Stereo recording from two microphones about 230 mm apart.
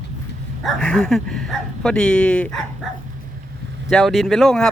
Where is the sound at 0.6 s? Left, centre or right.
Centre.